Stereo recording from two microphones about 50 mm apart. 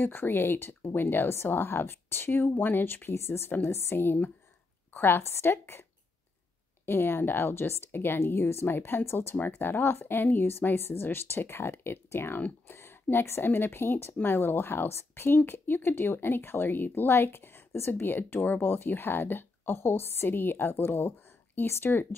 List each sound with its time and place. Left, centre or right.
0.0 s speech: left
6.9 s speech: left
12.4 s speech: left
12.7 s speech: left
17.1 s speech: left